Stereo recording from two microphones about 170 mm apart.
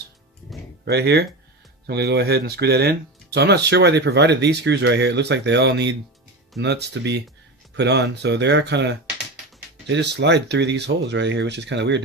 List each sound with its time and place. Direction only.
0.9 s speech: 75° right (ahead or behind)
3.3 s speech: 80° right